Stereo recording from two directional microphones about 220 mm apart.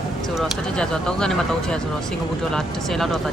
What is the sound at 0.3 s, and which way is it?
Speech, centre (ahead or behind).